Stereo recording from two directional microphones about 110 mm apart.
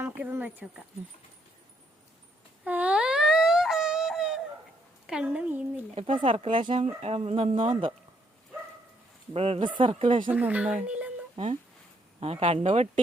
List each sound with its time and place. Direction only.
0.0 s speech: 20° right (ahead or behind)
2.6 s a sound: 15° right (ahead or behind)
5.0 s speech: 10° right (ahead or behind)
5.9 s speech: 60° right (ahead or behind)
7.0 s speech: 70° right (ahead or behind)
7.6 s speech: 50° right (ahead or behind)
9.3 s speech: 65° right (ahead or behind)
9.6 s speech: 50° right (ahead or behind)
10.3 s speech: 15° right (ahead or behind)
12.2 s speech: 60° right (ahead or behind)